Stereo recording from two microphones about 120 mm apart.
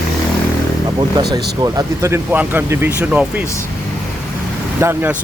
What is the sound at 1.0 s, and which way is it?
Speech, 35° right (ahead or behind).